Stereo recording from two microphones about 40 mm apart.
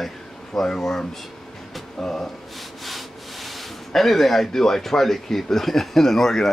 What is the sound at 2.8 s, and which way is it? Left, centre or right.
Rub, centre.